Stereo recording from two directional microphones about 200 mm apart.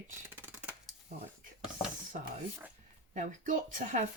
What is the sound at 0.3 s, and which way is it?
Scissors, 10° right (ahead or behind).